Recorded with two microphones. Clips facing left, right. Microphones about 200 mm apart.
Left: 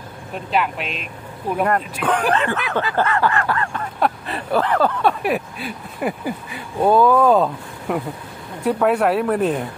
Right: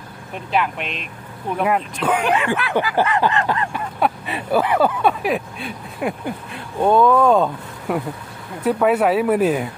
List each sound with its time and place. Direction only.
0.5 s speech: centre (ahead or behind)
2.3 s a sound: 10° right (ahead or behind)
4.0 s speech: 5° right (ahead or behind)